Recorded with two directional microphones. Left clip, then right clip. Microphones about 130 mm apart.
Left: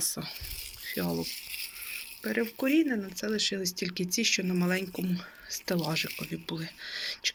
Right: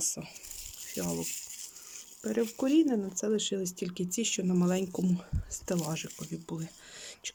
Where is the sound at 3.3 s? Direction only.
35° right (ahead or behind); by 4.8 s 20° right (ahead or behind).